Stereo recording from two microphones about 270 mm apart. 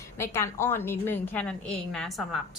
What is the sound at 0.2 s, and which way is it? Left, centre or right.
A woman's voice, centre.